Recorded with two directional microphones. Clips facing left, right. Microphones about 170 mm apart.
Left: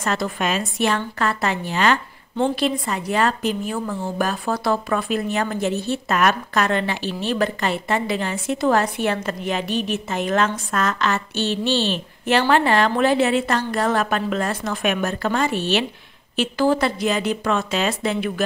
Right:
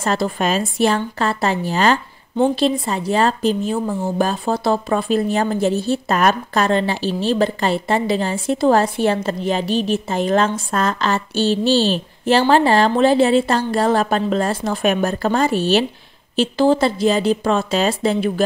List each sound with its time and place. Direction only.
0.0 s a woman's voice: 30° right (ahead or behind)